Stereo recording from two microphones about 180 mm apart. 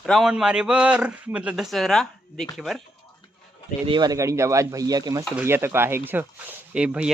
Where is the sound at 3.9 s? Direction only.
20° right (ahead or behind).